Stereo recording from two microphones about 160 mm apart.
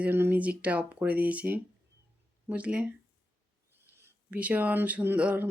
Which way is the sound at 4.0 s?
10° right (ahead or behind).